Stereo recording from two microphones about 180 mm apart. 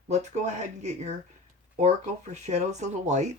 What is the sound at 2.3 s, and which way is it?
Speech, 40° right (ahead or behind).